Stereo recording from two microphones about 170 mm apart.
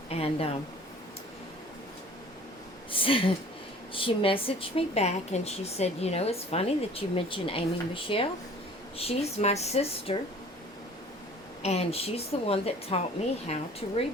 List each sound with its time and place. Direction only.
0.1 s a sound: 35° left (ahead or behind)
2.9 s a woman's voice: 30° left (ahead or behind)
11.6 s a woman's voice: 40° left (ahead or behind)